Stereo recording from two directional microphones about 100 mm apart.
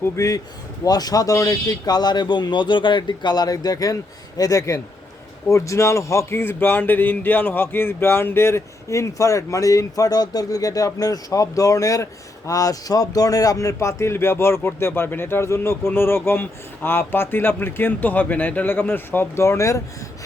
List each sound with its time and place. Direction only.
0.0 s speech: 35° left (ahead or behind)